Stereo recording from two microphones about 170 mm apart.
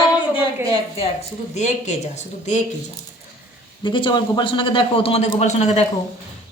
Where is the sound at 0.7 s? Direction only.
35° left (ahead or behind).